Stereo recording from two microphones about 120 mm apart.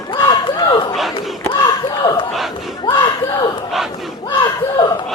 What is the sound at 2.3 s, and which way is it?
Battle cry, centre (ahead or behind).